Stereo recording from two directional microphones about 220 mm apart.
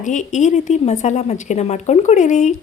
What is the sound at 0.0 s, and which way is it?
A woman's voice, 35° left (ahead or behind).